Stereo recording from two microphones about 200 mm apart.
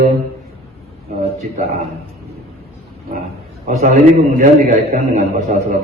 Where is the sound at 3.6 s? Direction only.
35° right (ahead or behind).